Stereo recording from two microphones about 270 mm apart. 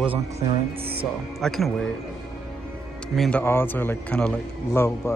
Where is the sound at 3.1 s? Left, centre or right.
Centre.